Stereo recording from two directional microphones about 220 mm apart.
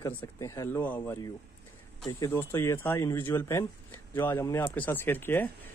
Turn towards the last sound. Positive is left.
turn(degrees=10)  # may be behind; listen again after turning